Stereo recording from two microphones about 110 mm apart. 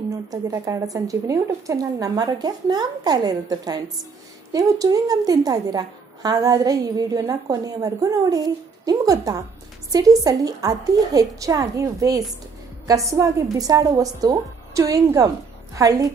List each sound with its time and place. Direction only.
0.1 s speech: 30° right (ahead or behind)